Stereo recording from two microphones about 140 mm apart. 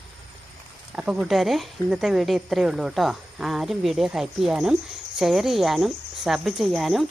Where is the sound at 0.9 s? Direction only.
5° right (ahead or behind).